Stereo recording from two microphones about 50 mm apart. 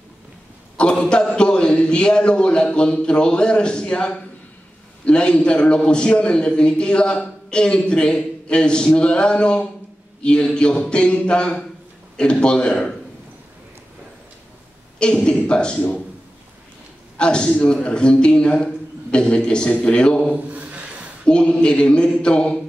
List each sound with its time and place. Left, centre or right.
0.7 s a man's voice: centre
15.2 s a man's voice: centre
17.2 s a man's voice: centre
20.3 s a sound: right
21.3 s a man's voice: centre